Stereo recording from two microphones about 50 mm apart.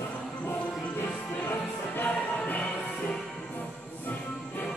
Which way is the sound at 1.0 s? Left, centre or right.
Left.